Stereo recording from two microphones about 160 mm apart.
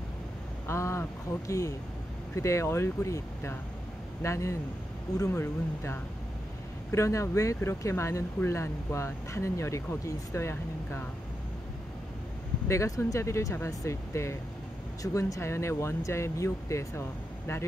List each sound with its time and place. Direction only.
0.7 s a sound: 15° left (ahead or behind)
1.5 s speech: 20° left (ahead or behind)
12.6 s speech: 20° left (ahead or behind)